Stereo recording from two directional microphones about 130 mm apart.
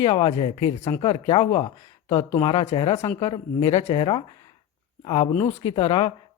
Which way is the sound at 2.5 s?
45° left (ahead or behind).